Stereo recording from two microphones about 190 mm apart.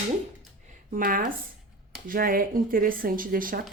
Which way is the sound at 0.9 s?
45° right (ahead or behind).